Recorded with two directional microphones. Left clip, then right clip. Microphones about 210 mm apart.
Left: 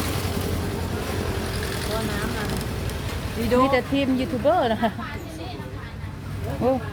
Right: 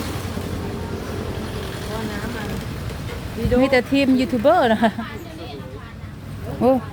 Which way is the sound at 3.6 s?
25° right (ahead or behind).